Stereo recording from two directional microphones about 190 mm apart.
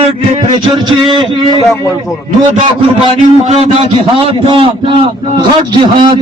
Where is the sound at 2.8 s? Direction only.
30° right (ahead or behind).